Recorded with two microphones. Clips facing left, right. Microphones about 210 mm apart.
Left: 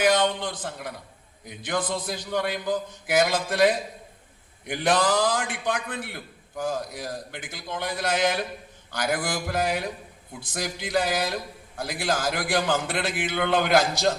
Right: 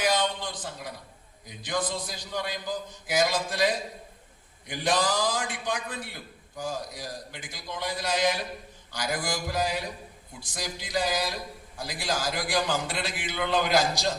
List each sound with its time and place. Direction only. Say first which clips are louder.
0.0 s a man's voice: left 5 dB; 55° left (ahead or behind)